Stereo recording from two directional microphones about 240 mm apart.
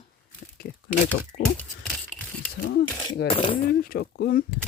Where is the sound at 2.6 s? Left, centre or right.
Left.